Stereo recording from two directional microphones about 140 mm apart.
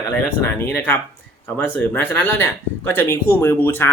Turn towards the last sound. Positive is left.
turn(degrees=15)  # may be behind; listen again after turning